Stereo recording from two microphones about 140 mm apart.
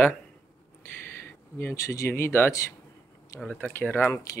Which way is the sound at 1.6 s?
20° left (ahead or behind).